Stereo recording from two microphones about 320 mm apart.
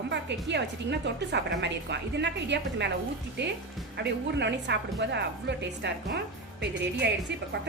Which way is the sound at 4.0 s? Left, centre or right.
Right.